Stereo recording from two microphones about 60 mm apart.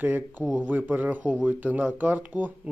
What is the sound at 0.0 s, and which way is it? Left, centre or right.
Speech, right.